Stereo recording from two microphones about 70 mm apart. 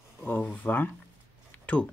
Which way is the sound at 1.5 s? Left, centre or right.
Centre.